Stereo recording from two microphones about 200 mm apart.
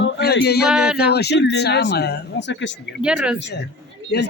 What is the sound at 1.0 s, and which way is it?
Speech, 55° left (ahead or behind).